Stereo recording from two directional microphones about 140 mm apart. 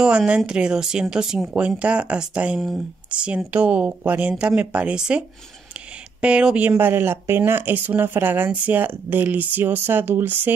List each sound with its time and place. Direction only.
0.0 s speech: 5° right (ahead or behind)
6.2 s speech: 10° right (ahead or behind)